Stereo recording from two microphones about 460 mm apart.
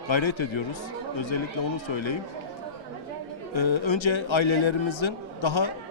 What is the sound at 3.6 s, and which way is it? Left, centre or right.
A man's voice, left.